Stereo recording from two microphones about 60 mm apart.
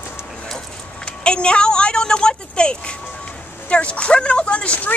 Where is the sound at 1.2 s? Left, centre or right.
Centre.